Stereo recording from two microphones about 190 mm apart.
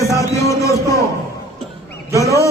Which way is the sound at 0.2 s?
15° left (ahead or behind).